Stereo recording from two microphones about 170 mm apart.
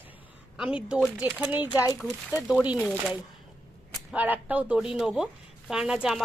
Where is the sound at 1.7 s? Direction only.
25° left (ahead or behind).